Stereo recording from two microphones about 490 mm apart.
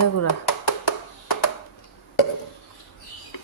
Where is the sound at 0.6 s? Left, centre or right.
Left.